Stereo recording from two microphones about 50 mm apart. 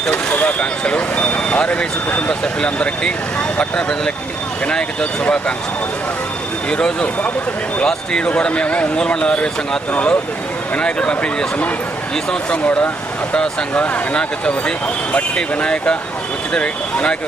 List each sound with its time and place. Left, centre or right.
0.3 s speech: left
2.4 s speech: centre
6.7 s speech: left
12.6 s speech: left